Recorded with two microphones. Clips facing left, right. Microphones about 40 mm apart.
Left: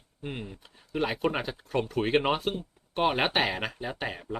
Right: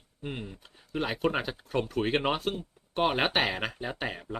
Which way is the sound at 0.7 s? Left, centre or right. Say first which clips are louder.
Left 2 dB; centre.